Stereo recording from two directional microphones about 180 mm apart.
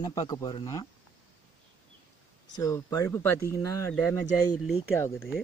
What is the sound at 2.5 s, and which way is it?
Speech, 20° left (ahead or behind).